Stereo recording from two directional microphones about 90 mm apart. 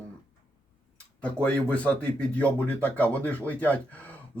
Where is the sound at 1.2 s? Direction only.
15° left (ahead or behind).